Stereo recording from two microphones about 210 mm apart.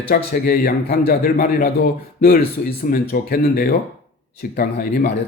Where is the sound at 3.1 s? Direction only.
45° left (ahead or behind).